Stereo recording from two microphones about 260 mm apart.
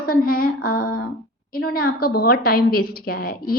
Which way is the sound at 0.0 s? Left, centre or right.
Left.